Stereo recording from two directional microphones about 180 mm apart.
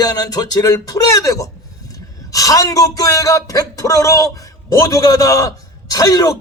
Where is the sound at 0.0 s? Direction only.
20° left (ahead or behind).